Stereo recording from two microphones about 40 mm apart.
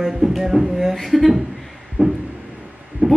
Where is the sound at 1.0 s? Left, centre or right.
Centre.